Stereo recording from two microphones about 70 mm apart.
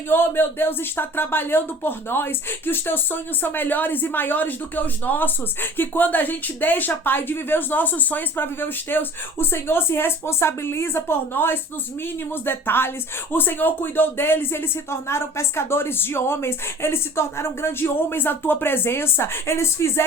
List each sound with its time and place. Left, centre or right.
0.1 s speech: left